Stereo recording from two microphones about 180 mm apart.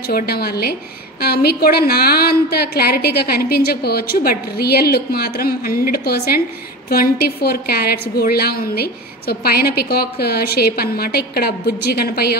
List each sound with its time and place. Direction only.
0.1 s a woman's voice: 60° left (ahead or behind)